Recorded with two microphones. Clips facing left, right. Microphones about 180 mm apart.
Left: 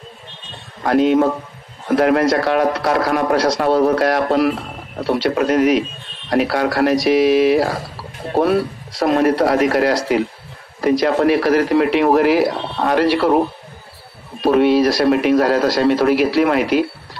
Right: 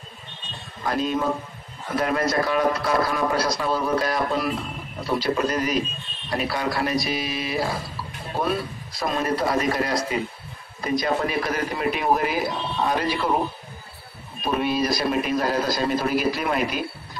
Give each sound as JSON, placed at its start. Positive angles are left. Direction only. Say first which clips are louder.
{"t": 0.8, "sound": "a man's voice", "louder": "left 10 dB", "side_deg": 70}
{"t": 14.4, "sound": "a man's voice", "louder": "left 11 dB", "side_deg": 75}